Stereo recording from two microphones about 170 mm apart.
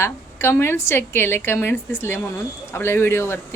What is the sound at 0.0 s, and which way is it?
A woman's voice, 15° left (ahead or behind).